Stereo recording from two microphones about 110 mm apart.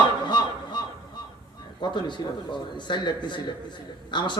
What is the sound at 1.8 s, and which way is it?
A man's voice, 45° left (ahead or behind).